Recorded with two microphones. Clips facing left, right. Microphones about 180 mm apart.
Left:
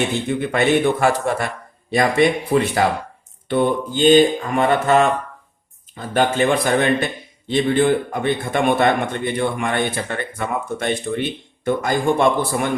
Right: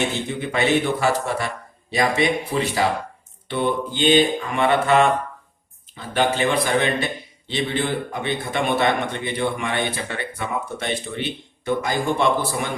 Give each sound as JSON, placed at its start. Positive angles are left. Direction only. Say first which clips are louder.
{"t": 0.3, "sound": "a man's voice", "louder": "left 4 dB", "side_deg": 50}